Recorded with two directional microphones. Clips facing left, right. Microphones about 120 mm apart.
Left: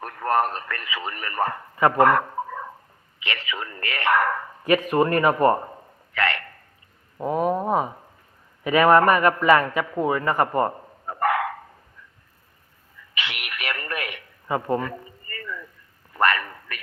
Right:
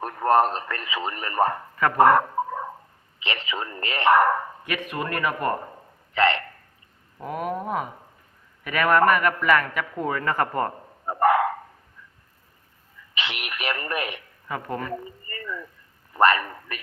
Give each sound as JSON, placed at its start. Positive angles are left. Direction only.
{"t": 0.0, "sound": "speech", "side_deg": -25}
{"t": 2.0, "sound": "a sound", "side_deg": -25}
{"t": 3.2, "sound": "a man's voice", "side_deg": -25}
{"t": 4.6, "sound": "speech", "side_deg": 35}
{"t": 6.1, "sound": "speech", "side_deg": -25}
{"t": 7.2, "sound": "a sound", "side_deg": 30}
{"t": 8.6, "sound": "a man's voice", "side_deg": 30}
{"t": 10.0, "sound": "speech", "side_deg": 10}
{"t": 11.0, "sound": "dog", "side_deg": -25}
{"t": 13.1, "sound": "radio", "side_deg": -25}
{"t": 14.4, "sound": "speech", "side_deg": 25}
{"t": 14.8, "sound": "a sound", "side_deg": -25}